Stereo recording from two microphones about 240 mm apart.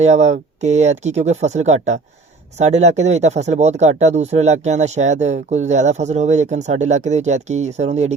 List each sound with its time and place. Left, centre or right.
0.0 s speech: right